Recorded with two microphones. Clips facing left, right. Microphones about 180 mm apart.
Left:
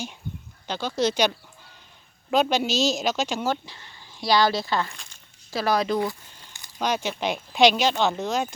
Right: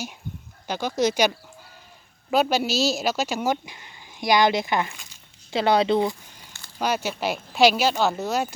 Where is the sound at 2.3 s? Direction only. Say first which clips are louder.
Even; 5° right (ahead or behind); by 6.2 s 25° right (ahead or behind).